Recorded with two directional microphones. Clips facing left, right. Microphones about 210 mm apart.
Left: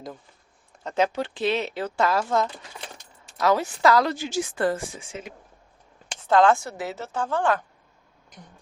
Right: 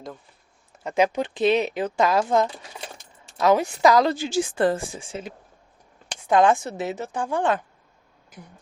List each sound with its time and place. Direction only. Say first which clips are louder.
0.9 s speech: right 2 dB; 15° right (ahead or behind)
4.0 s a woman's voice: right 4 dB; 30° right (ahead or behind)
6.2 s speech: even; 15° right (ahead or behind)